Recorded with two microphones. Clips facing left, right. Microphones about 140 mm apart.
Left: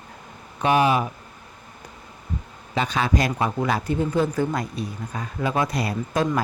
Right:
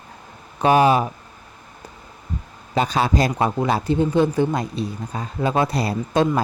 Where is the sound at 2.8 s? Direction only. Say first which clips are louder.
Right 3 dB; 35° right (ahead or behind).